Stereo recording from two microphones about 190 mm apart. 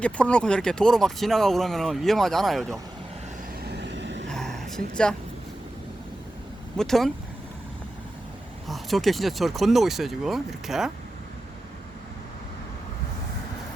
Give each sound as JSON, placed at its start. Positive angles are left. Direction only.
{"t": 0.0, "sound": "speech", "side_deg": 5}
{"t": 3.6, "sound": "vehicle", "side_deg": -60}
{"t": 4.3, "sound": "a sound", "side_deg": 5}
{"t": 6.7, "sound": "speech", "side_deg": 0}
{"t": 8.6, "sound": "speech", "side_deg": 0}